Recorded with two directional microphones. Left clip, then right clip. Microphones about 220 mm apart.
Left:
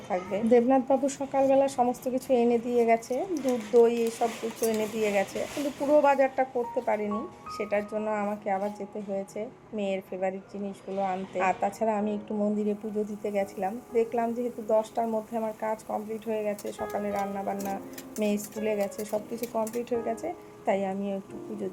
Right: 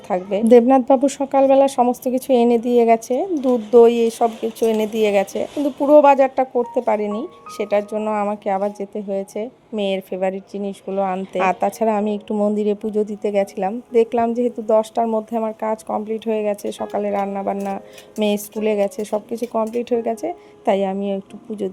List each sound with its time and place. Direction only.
0.1 s speech: 45° right (ahead or behind)